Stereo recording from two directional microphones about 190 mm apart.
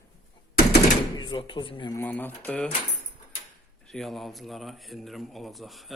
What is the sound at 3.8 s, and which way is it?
Speech, centre (ahead or behind).